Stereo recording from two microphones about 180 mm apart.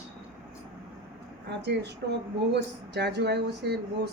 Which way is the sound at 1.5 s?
70° right (ahead or behind).